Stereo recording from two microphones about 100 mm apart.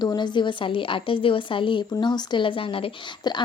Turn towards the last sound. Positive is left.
turn(degrees=45)  # may be behind; listen again after turning